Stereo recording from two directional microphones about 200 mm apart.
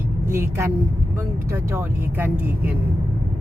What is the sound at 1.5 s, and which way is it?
Speech, 10° right (ahead or behind).